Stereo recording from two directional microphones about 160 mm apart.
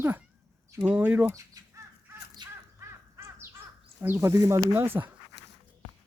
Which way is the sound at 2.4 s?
25° right (ahead or behind).